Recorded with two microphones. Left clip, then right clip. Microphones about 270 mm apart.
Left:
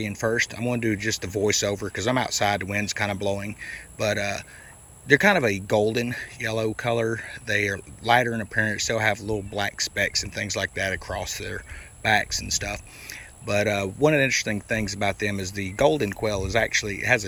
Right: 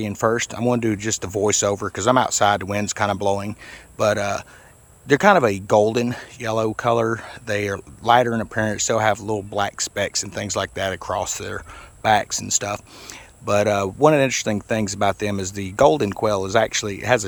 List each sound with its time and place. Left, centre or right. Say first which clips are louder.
0.0 s speech: right 4 dB; centre